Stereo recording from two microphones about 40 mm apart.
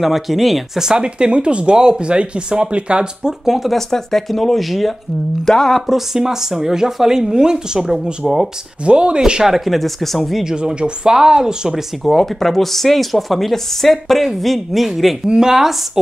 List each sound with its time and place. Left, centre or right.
0.0 s speech: centre
0.7 s speech: centre
3.4 s speech: centre
3.7 s speech: centre
5.9 s speech: centre
8.8 s speech: right
9.7 s speech: centre
10.4 s speech: right
12.0 s speech: centre
15.2 s speech: centre